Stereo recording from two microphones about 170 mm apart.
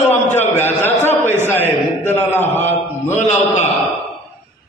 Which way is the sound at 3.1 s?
45° left (ahead or behind).